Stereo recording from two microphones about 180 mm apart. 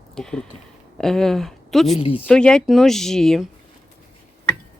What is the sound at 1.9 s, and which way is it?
Speech, 30° left (ahead or behind).